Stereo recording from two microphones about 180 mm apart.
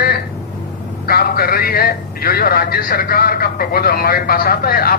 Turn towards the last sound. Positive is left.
turn(degrees=55)  # may be behind; listen again after turning